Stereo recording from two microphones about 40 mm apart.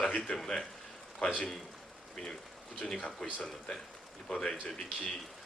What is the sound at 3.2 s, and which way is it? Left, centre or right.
Speech, centre.